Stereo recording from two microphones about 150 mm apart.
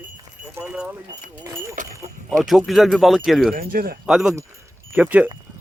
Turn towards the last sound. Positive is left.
turn(degrees=-10)  # may be behind; listen again after turning